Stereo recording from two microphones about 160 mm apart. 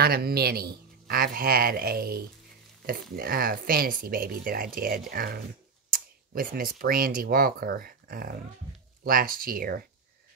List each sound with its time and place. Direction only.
0.0 s a man's voice: 80° right